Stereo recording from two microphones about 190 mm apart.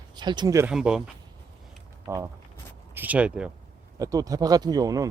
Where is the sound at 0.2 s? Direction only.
25° right (ahead or behind).